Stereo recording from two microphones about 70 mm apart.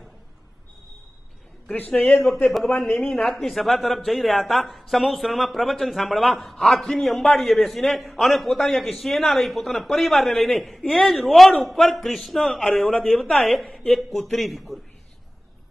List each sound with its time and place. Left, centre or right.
1.7 s a man's voice: left
2.4 s speech: centre